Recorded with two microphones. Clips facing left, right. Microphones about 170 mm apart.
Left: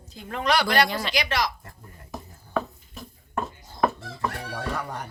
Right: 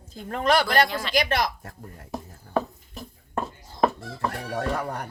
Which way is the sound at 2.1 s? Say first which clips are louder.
Right 3 dB; 35° right (ahead or behind).